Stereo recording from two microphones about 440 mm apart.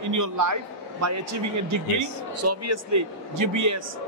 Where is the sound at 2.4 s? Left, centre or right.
Right.